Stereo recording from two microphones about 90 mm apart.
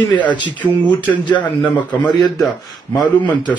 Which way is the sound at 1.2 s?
15° left (ahead or behind).